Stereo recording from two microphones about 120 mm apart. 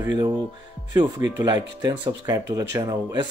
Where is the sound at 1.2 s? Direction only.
30° right (ahead or behind).